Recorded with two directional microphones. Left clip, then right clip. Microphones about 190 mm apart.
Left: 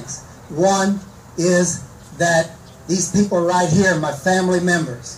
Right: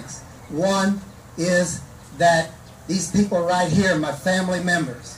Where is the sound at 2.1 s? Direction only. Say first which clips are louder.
Even; 40° left (ahead or behind).